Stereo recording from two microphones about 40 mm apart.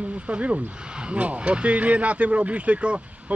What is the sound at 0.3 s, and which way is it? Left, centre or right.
Speech, right.